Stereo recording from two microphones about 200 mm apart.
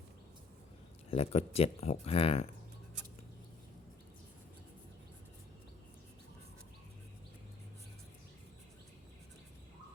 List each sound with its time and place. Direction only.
1.1 s speech: 30° left (ahead or behind)